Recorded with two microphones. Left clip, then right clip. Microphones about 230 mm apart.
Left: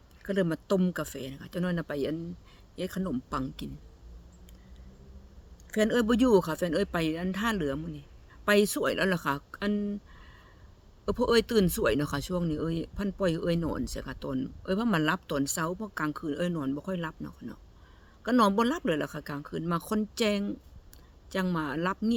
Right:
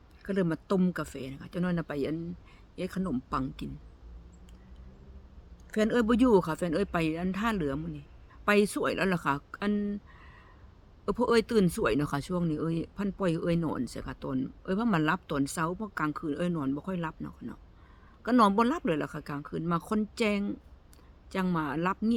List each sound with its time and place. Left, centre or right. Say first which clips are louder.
0.2 s speech: left 1 dB; centre
5.7 s speech: left 1 dB; centre
11.0 s speech: left 1 dB; centre